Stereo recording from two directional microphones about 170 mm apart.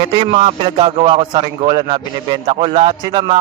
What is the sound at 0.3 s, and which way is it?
A man's voice, 30° right (ahead or behind).